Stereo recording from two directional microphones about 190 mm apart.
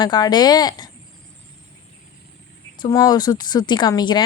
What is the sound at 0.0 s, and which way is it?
Speech, 20° left (ahead or behind).